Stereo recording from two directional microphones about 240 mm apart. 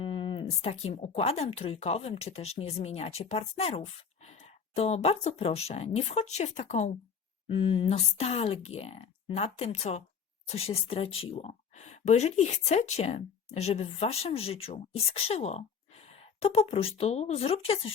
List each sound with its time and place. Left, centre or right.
0.0 s speech: left